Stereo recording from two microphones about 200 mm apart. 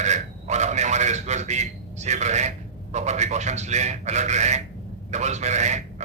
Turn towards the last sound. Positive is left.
turn(degrees=-35)  # may be behind; listen again after turning